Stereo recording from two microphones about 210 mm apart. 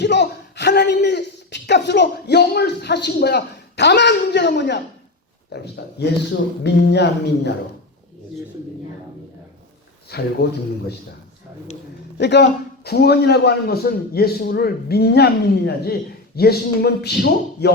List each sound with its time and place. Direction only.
0.0 s a sound: 55° left (ahead or behind)
5.5 s a man's voice: 50° left (ahead or behind)
10.1 s a man's voice: 50° left (ahead or behind)
12.1 s a man's voice: 55° left (ahead or behind)